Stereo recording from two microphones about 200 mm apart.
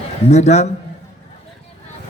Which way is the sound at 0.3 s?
35° left (ahead or behind).